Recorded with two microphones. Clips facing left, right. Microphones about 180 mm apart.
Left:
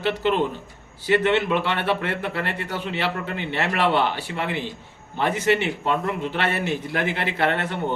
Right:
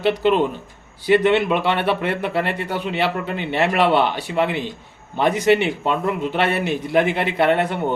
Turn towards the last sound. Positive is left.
turn(degrees=-15)  # may be behind; listen again after turning